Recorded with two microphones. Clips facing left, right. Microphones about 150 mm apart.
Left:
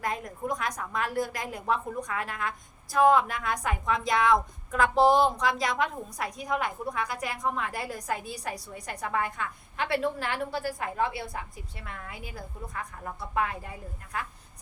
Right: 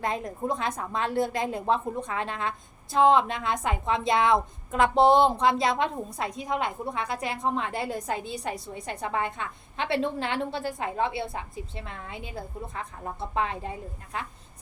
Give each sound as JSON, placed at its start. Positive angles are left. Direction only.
{"t": 0.0, "sound": "a woman's voice", "side_deg": -25}